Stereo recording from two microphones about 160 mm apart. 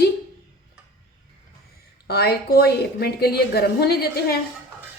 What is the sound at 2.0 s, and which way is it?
A woman's voice, 90° left.